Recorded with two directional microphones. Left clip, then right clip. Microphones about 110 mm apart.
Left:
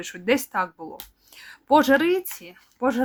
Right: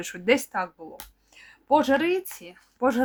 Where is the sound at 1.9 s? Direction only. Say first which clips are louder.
Left 3 dB; 30° left (ahead or behind).